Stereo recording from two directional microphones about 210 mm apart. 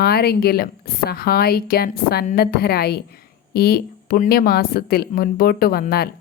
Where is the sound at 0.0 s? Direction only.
50° left (ahead or behind).